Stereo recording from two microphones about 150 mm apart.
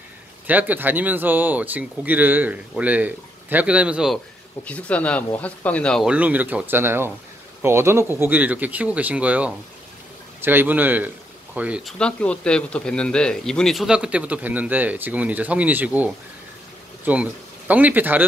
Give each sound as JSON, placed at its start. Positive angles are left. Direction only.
{"t": 0.5, "sound": "a man's voice", "side_deg": -10}
{"t": 4.6, "sound": "speech", "side_deg": 10}
{"t": 6.0, "sound": "a man's voice", "side_deg": -10}
{"t": 8.0, "sound": "speech", "side_deg": 20}
{"t": 8.3, "sound": "a man's voice", "side_deg": -10}
{"t": 12.0, "sound": "a man's voice", "side_deg": 5}